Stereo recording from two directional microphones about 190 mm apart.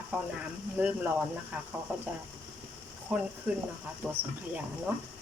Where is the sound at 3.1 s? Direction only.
5° right (ahead or behind).